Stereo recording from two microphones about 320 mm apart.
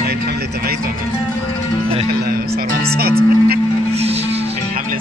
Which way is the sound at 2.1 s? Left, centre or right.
Right.